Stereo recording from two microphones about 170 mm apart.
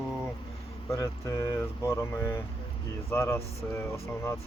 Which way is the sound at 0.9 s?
15° left (ahead or behind).